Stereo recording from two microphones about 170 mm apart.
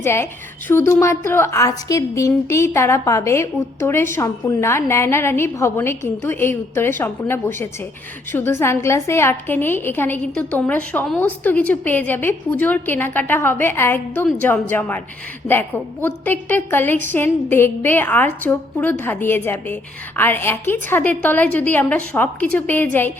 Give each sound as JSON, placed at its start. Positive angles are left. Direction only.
{"t": 0.0, "sound": "a woman's voice", "side_deg": 15}